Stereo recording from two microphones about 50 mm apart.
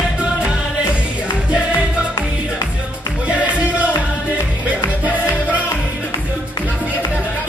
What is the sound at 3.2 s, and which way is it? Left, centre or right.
Music, right.